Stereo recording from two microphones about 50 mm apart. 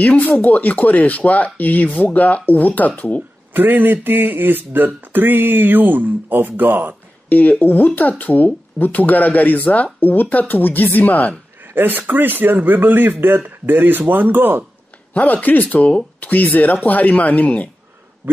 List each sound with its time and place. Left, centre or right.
0.0 s speech: left
3.5 s speech: right
7.2 s speech: left
11.7 s speech: right
15.1 s speech: left
18.2 s a sound: right